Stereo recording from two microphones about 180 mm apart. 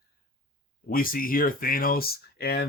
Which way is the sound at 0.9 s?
50° left (ahead or behind).